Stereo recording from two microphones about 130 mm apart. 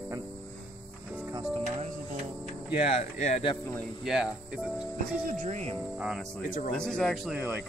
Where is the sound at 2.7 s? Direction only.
55° left (ahead or behind).